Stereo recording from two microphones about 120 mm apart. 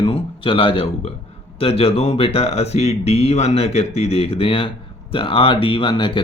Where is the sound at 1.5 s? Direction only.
55° left (ahead or behind).